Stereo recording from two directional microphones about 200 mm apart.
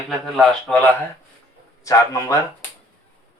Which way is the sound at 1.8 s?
15° left (ahead or behind).